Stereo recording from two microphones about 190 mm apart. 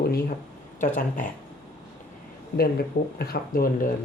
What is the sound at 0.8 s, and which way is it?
Speech, 40° left (ahead or behind).